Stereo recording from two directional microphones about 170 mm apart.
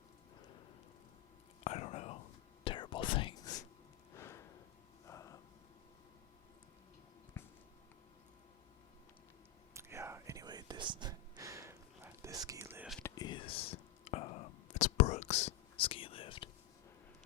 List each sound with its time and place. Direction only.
1.6 s whispering: 40° left (ahead or behind)
2.6 s whispering: 30° left (ahead or behind)
4.1 s a sound: 15° left (ahead or behind)
7.3 s a sound: 15° left (ahead or behind)
9.7 s whispering: 15° right (ahead or behind)
13.0 s whispering: 20° left (ahead or behind)